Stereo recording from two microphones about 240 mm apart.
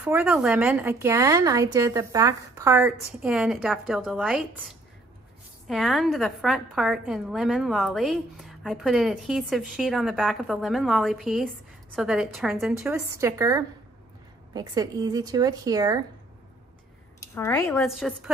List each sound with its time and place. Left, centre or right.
0.0 s a woman's voice: centre
5.7 s a woman's voice: centre
13.4 s a woman's voice: centre
17.2 s speech: centre
17.8 s a woman's voice: centre